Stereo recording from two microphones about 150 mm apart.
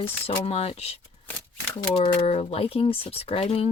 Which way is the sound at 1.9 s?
40° left (ahead or behind).